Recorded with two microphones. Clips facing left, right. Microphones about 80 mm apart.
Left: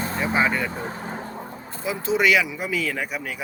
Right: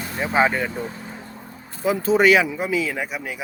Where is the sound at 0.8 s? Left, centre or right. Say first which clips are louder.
Left 2 dB; left.